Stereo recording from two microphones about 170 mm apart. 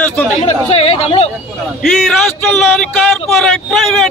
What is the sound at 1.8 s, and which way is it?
A man's voice, centre (ahead or behind).